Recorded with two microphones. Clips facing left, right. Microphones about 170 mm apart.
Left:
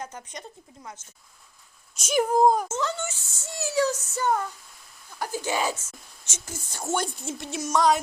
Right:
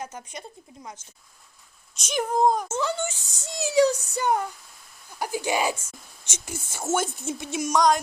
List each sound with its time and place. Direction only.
0.0 s speech: 10° right (ahead or behind)
2.0 s speech: 5° left (ahead or behind)
2.6 s speech: 10° right (ahead or behind)
7.2 s a sound: centre (ahead or behind)